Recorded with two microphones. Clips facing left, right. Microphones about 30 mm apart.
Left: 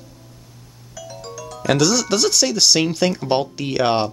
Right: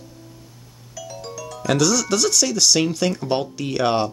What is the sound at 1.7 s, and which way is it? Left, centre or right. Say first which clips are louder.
Speech: left 2 dB; left.